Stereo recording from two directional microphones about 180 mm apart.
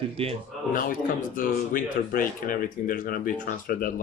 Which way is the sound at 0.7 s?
50° left (ahead or behind).